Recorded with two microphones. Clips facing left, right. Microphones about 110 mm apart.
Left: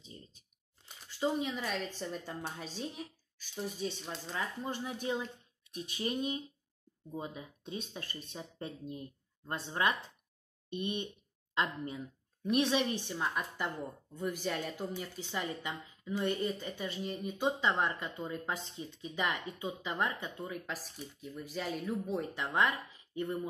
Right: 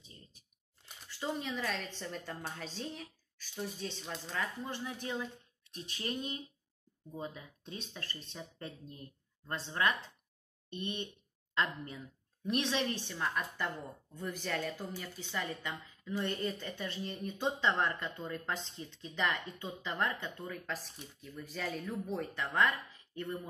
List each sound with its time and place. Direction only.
1.2 s speech: 15° left (ahead or behind)
4.1 s speech: 15° left (ahead or behind)